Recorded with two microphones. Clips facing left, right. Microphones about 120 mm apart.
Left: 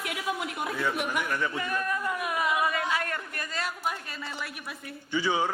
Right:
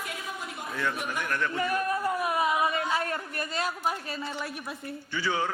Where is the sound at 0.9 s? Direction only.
80° left.